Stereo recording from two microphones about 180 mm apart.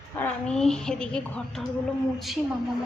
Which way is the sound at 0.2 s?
5° left (ahead or behind).